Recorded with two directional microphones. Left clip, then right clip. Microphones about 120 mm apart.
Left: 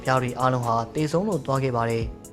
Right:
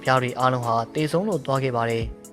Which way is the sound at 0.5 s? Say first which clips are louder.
Right 1 dB; 40° right (ahead or behind).